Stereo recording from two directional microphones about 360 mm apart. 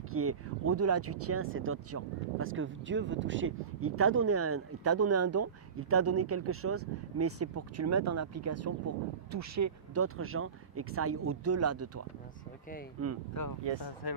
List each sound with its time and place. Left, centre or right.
0.1 s speech: right
13.0 s speech: right
14.0 s speech: left